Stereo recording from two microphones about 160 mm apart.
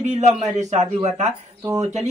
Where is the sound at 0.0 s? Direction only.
45° right (ahead or behind).